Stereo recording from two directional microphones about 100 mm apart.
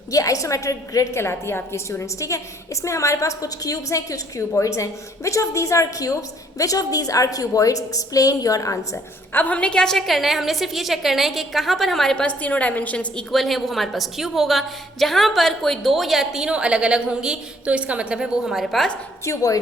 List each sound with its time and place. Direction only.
0.1 s a woman's voice: 35° left (ahead or behind)
9.3 s a woman's voice: 15° left (ahead or behind)
13.3 s a woman's voice: centre (ahead or behind)
19.2 s a woman's voice: 35° left (ahead or behind)